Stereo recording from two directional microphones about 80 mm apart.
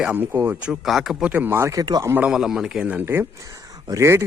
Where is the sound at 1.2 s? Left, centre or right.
Right.